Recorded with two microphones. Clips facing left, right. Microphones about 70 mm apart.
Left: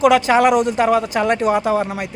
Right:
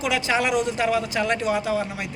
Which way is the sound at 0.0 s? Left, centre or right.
Left.